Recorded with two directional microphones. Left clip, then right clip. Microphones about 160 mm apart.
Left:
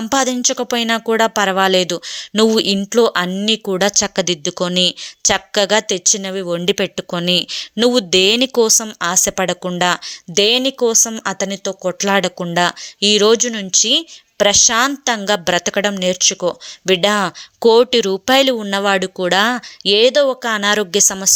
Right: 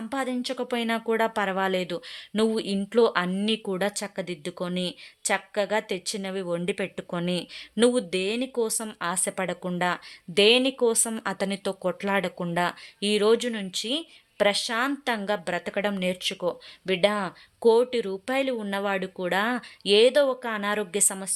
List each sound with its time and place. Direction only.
0.0 s speech: 40° left (ahead or behind); by 11.9 s 15° left (ahead or behind)
11.9 s speech: 30° left (ahead or behind)